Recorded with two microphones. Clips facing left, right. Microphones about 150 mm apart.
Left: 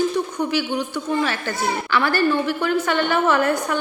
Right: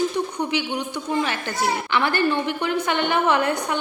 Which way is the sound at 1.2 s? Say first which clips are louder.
Left 1 dB; 20° right (ahead or behind).